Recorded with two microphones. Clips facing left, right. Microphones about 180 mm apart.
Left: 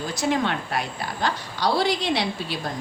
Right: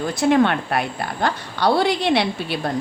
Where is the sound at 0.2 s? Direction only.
60° right (ahead or behind).